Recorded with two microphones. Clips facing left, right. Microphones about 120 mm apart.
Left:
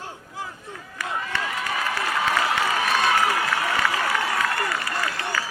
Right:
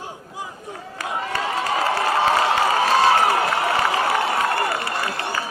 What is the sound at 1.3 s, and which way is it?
Crowd, 30° right (ahead or behind).